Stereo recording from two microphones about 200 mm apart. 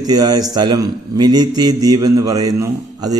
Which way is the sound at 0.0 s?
20° right (ahead or behind).